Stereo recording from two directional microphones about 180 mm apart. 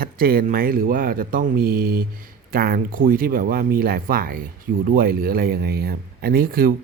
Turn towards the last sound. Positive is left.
turn(degrees=-55)  # may be behind; listen again after turning